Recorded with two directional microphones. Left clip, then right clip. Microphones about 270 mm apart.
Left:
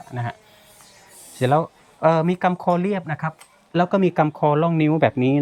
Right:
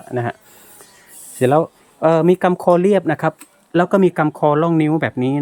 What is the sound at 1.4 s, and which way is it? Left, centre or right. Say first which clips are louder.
Speech: right 5 dB; centre.